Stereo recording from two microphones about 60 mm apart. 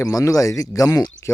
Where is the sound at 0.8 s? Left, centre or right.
Left.